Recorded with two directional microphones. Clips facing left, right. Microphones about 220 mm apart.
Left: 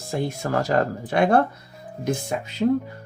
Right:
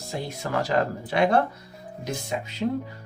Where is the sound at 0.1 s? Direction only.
50° left (ahead or behind).